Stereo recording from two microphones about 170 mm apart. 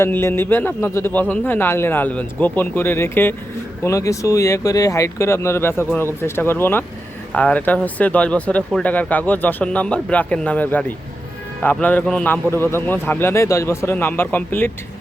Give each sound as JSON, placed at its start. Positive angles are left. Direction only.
{"t": 0.0, "sound": "speech", "side_deg": 15}